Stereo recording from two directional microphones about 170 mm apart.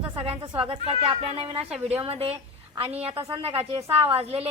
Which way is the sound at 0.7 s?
35° right (ahead or behind).